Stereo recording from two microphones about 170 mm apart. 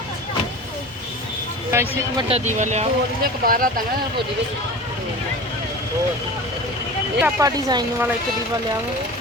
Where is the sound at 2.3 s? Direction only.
40° right (ahead or behind).